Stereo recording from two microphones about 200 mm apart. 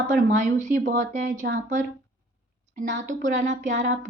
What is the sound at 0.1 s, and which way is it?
A woman's voice, 40° right (ahead or behind).